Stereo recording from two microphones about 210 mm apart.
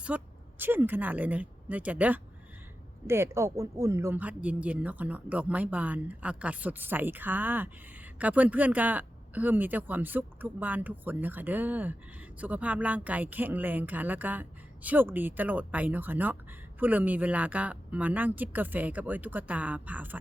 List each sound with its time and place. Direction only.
0.1 s speech: 5° right (ahead or behind)